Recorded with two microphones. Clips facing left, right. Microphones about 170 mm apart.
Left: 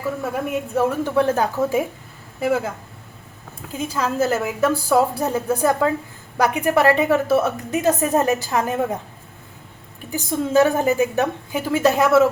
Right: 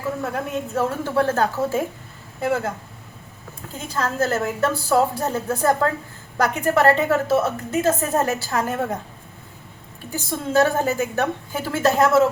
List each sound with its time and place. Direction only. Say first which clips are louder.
0.2 s a woman's voice: left 2 dB; 10° left (ahead or behind)
3.7 s a woman's voice: left 3 dB; 10° left (ahead or behind)
10.1 s a woman's voice: left 3 dB; 15° left (ahead or behind)